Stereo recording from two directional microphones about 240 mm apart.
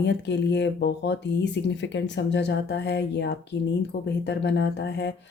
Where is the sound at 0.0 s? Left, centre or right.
Left.